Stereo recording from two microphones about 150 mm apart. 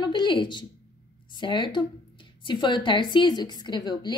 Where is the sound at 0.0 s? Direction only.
30° left (ahead or behind).